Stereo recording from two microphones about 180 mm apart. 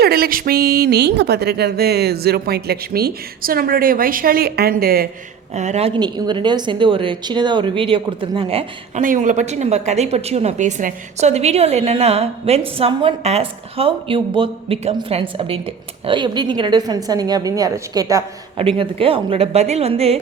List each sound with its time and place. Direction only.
0.0 s a woman's voice: 60° right (ahead or behind)
5.5 s a woman's voice: 40° right (ahead or behind)
9.0 s a woman's voice: 45° right (ahead or behind); by 18.2 s 20° right (ahead or behind)
18.5 s a woman's voice: 30° right (ahead or behind)